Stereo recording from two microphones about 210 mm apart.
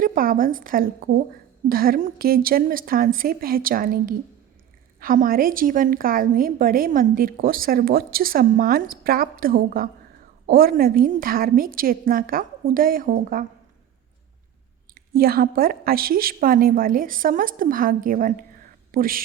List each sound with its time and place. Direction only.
0.0 s a woman's voice: 40° right (ahead or behind)
15.1 s a woman's voice: 45° right (ahead or behind)